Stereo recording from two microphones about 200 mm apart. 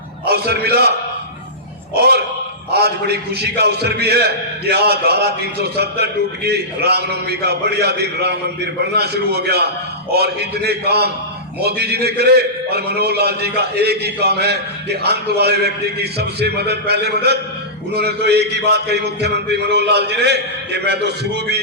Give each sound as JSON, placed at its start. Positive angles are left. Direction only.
{"t": 0.3, "sound": "a man's voice", "side_deg": -55}
{"t": 2.0, "sound": "a man's voice", "side_deg": -55}